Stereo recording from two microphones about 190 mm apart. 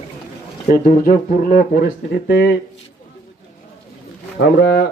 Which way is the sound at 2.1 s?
65° left (ahead or behind).